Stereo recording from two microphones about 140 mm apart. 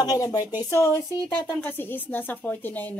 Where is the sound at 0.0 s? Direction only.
25° left (ahead or behind).